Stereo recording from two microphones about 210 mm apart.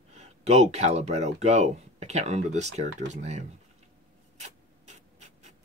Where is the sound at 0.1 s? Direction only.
30° right (ahead or behind).